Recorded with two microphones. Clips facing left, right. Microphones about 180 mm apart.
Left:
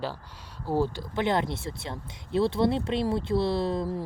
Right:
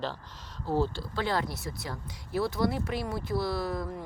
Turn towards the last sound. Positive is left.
turn(degrees=25)  # may be behind; listen again after turning